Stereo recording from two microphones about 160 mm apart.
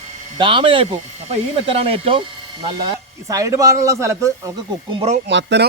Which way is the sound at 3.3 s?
20° right (ahead or behind).